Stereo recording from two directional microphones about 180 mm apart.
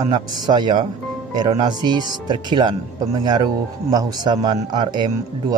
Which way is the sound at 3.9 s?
20° right (ahead or behind).